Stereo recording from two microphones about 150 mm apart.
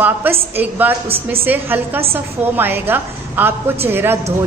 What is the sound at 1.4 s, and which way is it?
A woman's voice, 15° right (ahead or behind).